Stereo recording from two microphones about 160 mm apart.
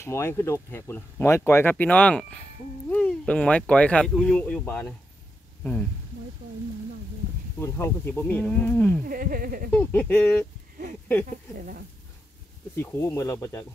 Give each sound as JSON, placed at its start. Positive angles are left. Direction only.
{"t": 0.0, "sound": "speech", "side_deg": 15}
{"t": 7.6, "sound": "speech", "side_deg": 15}
{"t": 9.0, "sound": "speech", "side_deg": -65}
{"t": 9.7, "sound": "speech", "side_deg": 10}
{"t": 11.5, "sound": "speech", "side_deg": -55}
{"t": 12.7, "sound": "speech", "side_deg": 15}